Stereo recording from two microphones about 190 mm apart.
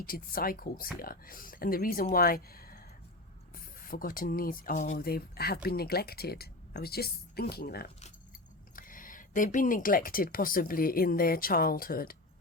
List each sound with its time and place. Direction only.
0.0 s a woman's voice: 50° left (ahead or behind)